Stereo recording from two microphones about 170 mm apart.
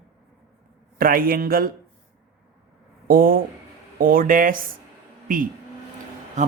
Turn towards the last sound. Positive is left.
turn(degrees=-45)  # may be behind; listen again after turning